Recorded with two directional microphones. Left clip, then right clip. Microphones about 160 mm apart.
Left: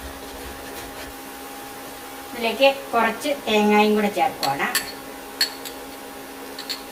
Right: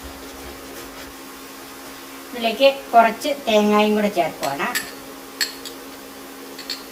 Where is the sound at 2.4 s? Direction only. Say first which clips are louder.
Right 2 dB; 40° right (ahead or behind).